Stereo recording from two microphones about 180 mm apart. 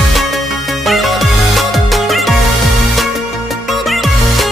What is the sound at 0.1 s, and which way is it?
Music, centre (ahead or behind).